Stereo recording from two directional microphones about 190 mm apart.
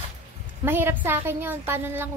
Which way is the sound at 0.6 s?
10° right (ahead or behind).